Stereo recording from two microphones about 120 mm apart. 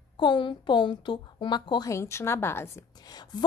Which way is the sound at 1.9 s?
25° left (ahead or behind).